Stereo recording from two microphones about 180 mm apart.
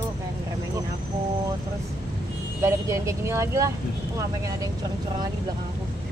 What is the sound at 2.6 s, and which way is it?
Speech, 15° right (ahead or behind).